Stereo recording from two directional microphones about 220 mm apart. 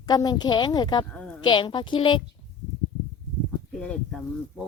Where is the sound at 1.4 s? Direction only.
20° left (ahead or behind).